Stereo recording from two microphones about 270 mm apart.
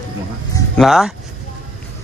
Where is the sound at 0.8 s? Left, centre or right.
Centre.